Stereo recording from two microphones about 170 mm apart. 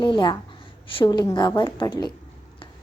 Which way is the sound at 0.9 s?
30° left (ahead or behind).